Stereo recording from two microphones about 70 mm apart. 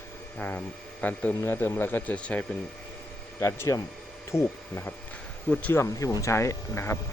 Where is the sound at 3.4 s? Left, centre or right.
Left.